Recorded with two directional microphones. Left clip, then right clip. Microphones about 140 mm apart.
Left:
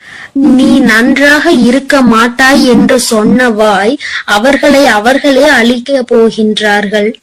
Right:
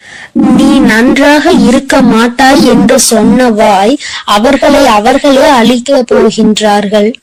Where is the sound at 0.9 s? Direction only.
35° right (ahead or behind).